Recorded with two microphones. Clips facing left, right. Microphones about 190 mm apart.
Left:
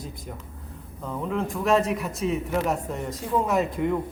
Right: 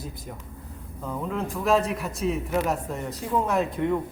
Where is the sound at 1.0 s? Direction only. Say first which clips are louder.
Left 1 dB; centre (ahead or behind).